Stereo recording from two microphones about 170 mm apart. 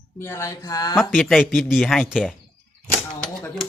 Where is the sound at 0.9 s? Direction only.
Centre (ahead or behind).